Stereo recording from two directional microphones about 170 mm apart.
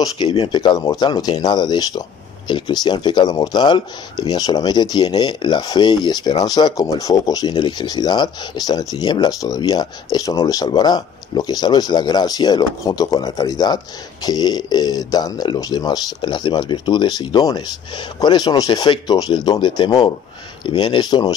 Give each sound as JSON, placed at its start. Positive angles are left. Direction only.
{"t": 0.0, "sound": "speech", "side_deg": 30}